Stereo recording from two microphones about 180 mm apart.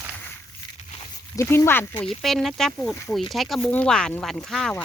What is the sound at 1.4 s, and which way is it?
A woman's voice, 10° left (ahead or behind).